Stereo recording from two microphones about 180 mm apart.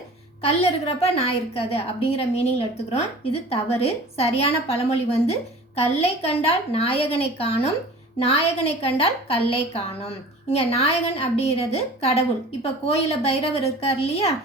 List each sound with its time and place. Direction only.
0.4 s a woman's voice: 35° left (ahead or behind)